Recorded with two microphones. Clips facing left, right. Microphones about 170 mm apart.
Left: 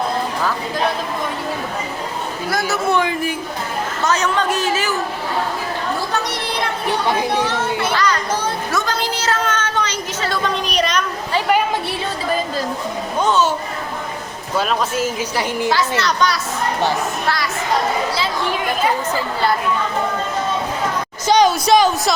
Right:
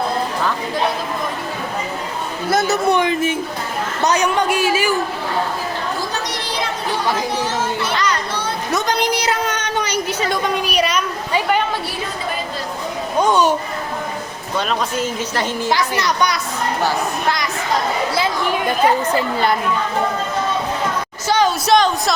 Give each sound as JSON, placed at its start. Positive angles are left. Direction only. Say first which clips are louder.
{"t": 2.5, "sound": "a woman's voice", "louder": "right 3 dB", "side_deg": -20}
{"t": 7.3, "sound": "speech", "louder": "left 1 dB", "side_deg": 60}
{"t": 8.7, "sound": "a sound", "louder": "right 7 dB", "side_deg": -20}
{"t": 13.2, "sound": "a sound", "louder": "right 1 dB", "side_deg": -15}
{"t": 14.6, "sound": "a woman's voice", "louder": "left 1 dB", "side_deg": 5}
{"t": 15.7, "sound": "a woman's voice", "louder": "right 2 dB", "side_deg": -15}
{"t": 21.2, "sound": "a woman's voice", "louder": "left 3 dB", "side_deg": 15}
{"t": 21.7, "sound": "a woman's voice", "louder": "left 1 dB", "side_deg": 0}